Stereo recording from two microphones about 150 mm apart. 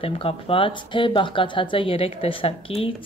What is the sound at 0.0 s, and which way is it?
Speech, 35° left (ahead or behind).